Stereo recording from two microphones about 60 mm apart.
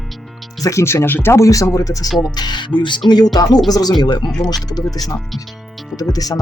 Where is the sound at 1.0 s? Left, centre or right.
Left.